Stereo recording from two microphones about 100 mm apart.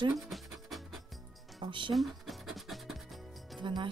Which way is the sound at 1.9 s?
Centre (ahead or behind).